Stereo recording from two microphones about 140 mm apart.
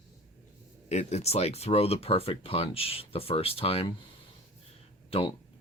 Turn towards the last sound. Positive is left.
turn(degrees=40)  # may be behind; listen again after turning